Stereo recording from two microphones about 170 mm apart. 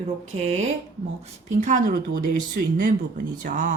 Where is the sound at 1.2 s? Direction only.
45° right (ahead or behind).